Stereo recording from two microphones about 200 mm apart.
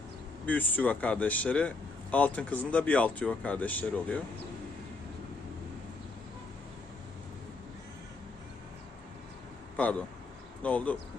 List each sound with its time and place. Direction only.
0.4 s speech: 10° left (ahead or behind)
10.6 s speech: 5° left (ahead or behind)